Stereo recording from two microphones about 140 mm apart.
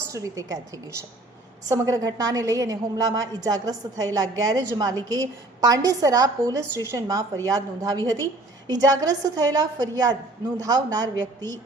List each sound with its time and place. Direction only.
0.1 s a woman's voice: 25° right (ahead or behind)
1.6 s a woman's voice: 25° right (ahead or behind)